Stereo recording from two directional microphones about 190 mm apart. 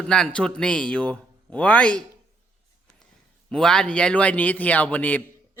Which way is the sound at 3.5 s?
5° left (ahead or behind).